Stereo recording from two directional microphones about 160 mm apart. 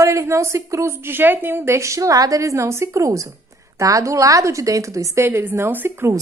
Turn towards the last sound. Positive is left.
turn(degrees=-15)  # may be behind; listen again after turning